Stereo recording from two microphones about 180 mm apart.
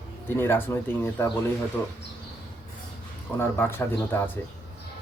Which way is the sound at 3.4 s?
10° left (ahead or behind).